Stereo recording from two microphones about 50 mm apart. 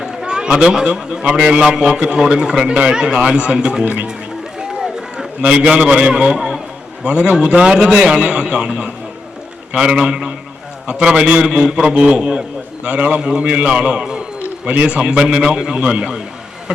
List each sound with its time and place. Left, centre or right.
0.0 s a man's voice: centre
4.8 s a sound: centre
7.0 s a man's voice: right